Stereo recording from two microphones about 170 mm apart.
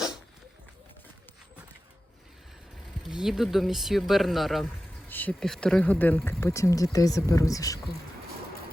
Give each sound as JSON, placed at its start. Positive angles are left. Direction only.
{"t": 3.0, "sound": "speech", "side_deg": -5}
{"t": 5.0, "sound": "speech", "side_deg": 10}